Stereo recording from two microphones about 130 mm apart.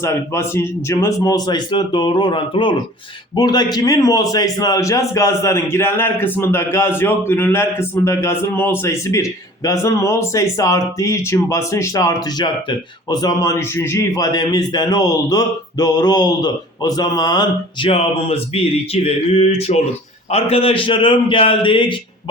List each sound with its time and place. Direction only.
0.0 s a man's voice: 20° left (ahead or behind)
17.8 s speech: 50° left (ahead or behind)